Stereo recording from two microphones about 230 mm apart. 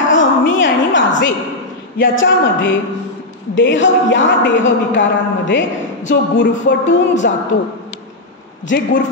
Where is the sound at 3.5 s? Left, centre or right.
Left.